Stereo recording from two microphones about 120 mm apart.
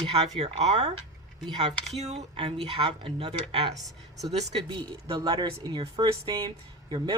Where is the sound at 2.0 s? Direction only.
65° right (ahead or behind).